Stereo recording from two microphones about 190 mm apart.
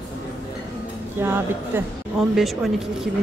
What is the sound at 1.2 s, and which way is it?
Speech, 10° right (ahead or behind).